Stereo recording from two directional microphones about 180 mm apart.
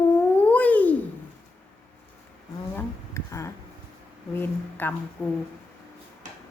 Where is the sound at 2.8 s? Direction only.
15° left (ahead or behind).